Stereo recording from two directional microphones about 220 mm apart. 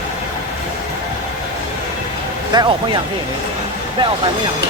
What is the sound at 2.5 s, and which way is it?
Speech, 20° right (ahead or behind).